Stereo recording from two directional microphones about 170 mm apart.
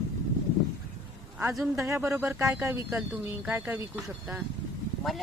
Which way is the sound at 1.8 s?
15° right (ahead or behind).